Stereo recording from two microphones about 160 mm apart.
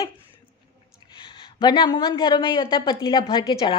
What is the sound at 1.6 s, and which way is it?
A woman's voice, 25° left (ahead or behind).